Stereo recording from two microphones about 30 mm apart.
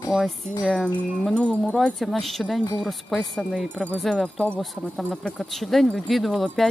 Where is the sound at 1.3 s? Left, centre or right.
Left.